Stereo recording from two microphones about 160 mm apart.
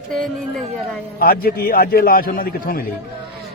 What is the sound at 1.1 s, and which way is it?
A man's voice, 70° left (ahead or behind).